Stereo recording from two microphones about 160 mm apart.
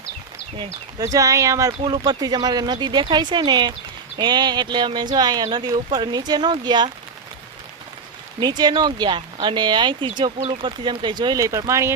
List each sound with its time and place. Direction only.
0.5 s speech: 25° right (ahead or behind)
8.4 s speech: 25° right (ahead or behind)